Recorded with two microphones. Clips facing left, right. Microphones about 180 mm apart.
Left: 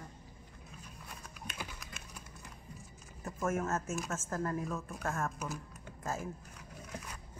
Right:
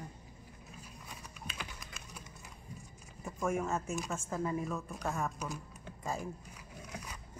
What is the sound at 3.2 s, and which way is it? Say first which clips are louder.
Speech: even; centre (ahead or behind).